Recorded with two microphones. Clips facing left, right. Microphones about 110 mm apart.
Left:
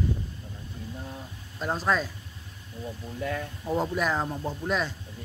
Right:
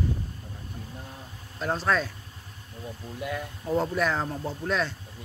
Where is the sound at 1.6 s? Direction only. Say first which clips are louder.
Right 1 dB; 5° left (ahead or behind).